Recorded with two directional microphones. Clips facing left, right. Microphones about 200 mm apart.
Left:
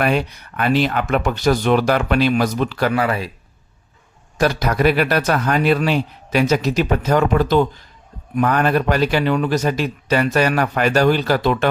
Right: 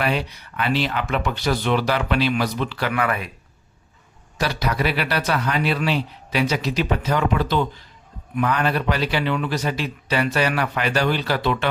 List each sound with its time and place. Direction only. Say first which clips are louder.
0.0 s speech: left 5 dB; 50° left (ahead or behind); by 3.3 s 30° left (ahead or behind)
4.4 s speech: left 6 dB; 45° left (ahead or behind)